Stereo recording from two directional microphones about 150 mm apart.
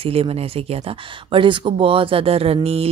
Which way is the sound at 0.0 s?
40° right (ahead or behind).